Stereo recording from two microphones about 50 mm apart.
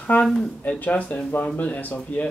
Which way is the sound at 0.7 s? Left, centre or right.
Left.